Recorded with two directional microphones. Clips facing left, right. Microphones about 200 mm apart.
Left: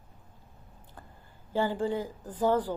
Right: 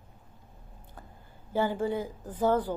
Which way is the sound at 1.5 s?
15° right (ahead or behind).